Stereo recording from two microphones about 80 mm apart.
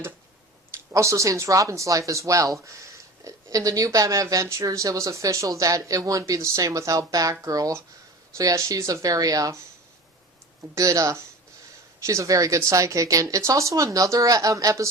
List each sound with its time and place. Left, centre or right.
0.7 s speech: right
10.8 s speech: right